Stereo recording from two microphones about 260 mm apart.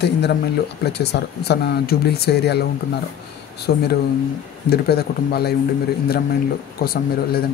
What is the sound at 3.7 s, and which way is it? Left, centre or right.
Speech, left.